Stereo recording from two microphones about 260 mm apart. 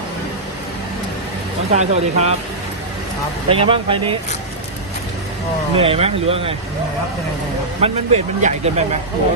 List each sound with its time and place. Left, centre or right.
1.7 s speech: right
3.5 s speech: centre
5.7 s speech: right
7.8 s speech: right